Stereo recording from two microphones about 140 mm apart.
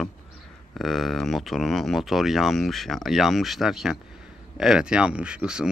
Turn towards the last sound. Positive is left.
turn(degrees=-5)  # may be behind; listen again after turning